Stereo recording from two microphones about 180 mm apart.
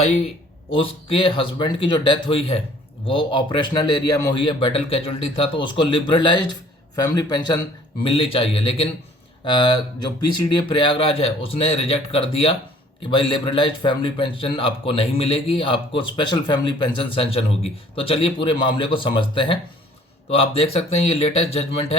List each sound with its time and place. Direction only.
0.7 s a man's voice: 30° left (ahead or behind)